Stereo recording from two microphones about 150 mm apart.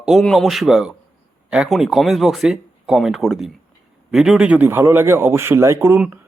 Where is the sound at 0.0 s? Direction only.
Centre (ahead or behind).